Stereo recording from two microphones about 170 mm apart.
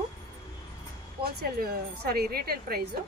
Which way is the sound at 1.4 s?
65° right (ahead or behind).